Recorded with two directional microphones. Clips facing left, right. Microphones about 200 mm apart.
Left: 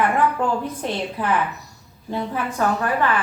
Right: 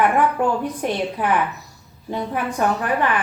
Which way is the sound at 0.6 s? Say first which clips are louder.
Right 3 dB; 15° right (ahead or behind).